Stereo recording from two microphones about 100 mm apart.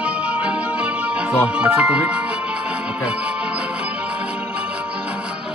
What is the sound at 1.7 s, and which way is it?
Speech, 15° right (ahead or behind).